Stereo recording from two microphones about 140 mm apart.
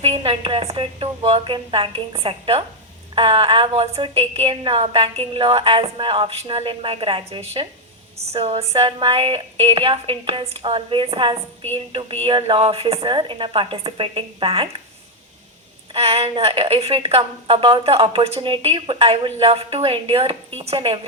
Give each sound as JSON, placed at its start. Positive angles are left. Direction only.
{"t": 0.0, "sound": "a woman's voice", "side_deg": -40}
{"t": 15.9, "sound": "a woman's voice", "side_deg": -45}